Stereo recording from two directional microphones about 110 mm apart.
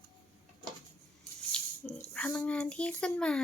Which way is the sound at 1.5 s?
5° left (ahead or behind).